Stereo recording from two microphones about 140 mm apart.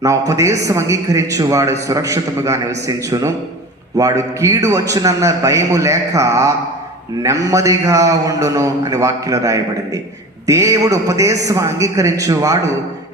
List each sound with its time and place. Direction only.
0.0 s a man's voice: 20° right (ahead or behind)